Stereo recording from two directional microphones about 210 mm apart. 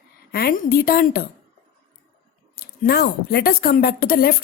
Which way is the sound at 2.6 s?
45° left (ahead or behind).